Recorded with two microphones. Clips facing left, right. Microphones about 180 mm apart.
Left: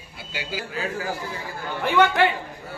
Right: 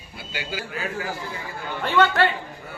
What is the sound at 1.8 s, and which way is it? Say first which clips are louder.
Speech: left 1 dB; 15° left (ahead or behind).